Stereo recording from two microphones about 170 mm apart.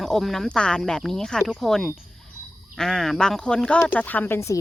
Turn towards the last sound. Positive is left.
turn(degrees=15)  # may be behind; listen again after turning